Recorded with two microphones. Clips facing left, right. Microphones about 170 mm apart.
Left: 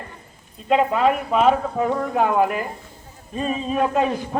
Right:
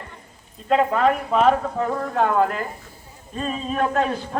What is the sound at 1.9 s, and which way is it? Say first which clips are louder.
A man's voice: left 1 dB; 15° left (ahead or behind).